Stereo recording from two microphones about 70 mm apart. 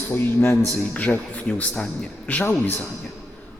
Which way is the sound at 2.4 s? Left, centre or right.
Left.